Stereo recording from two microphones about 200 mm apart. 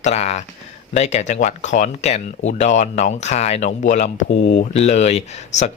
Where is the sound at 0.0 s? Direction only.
35° left (ahead or behind).